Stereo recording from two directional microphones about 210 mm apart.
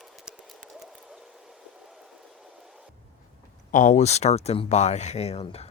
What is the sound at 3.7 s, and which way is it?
Speech, 35° left (ahead or behind).